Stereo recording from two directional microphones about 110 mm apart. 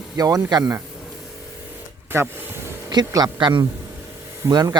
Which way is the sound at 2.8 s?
35° right (ahead or behind).